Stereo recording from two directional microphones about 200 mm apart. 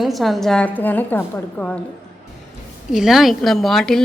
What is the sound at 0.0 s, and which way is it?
Speech, centre (ahead or behind).